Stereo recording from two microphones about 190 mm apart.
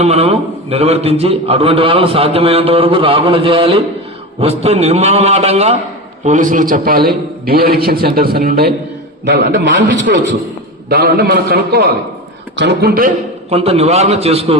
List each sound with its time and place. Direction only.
0.0 s a man's voice: 35° right (ahead or behind); by 8.7 s 55° right (ahead or behind)
9.2 s a man's voice: 65° right (ahead or behind)
10.8 s a man's voice: 55° right (ahead or behind)
13.5 s a man's voice: 35° right (ahead or behind)